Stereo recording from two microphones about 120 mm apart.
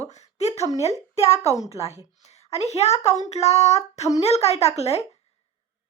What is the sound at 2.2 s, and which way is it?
Speech, 65° left (ahead or behind).